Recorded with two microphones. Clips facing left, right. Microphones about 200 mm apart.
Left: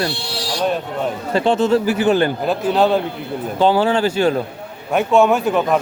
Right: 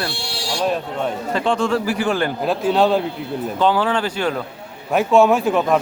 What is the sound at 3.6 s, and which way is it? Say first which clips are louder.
Speech: left 3 dB; 30° left (ahead or behind).